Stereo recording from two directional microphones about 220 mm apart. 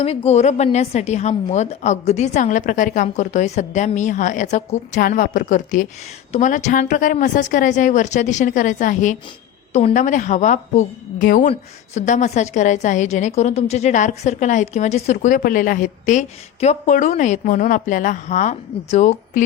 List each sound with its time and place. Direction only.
0.0 s a woman's voice: 25° left (ahead or behind)